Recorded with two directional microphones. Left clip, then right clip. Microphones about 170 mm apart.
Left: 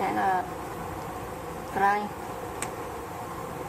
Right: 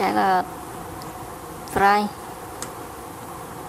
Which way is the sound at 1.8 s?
25° right (ahead or behind).